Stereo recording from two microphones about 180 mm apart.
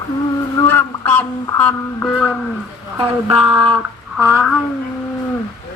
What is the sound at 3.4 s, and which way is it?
Speech, 30° right (ahead or behind).